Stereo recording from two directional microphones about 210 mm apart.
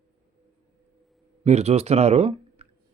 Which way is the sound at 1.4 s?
30° right (ahead or behind).